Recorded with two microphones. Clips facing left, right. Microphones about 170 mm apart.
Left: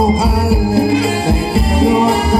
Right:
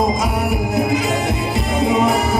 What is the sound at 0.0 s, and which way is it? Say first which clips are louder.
Music: left 4 dB; 30° left (ahead or behind).